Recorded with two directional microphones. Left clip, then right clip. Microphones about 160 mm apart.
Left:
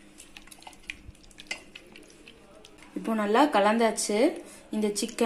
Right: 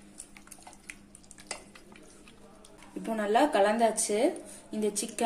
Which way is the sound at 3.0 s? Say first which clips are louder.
Left 2 dB; 35° left (ahead or behind).